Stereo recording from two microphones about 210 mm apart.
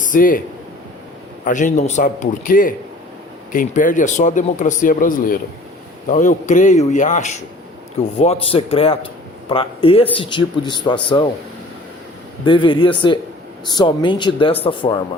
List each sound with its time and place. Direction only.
0.0 s speech: 40° left (ahead or behind)
1.5 s speech: 35° left (ahead or behind)
12.5 s speech: 25° left (ahead or behind)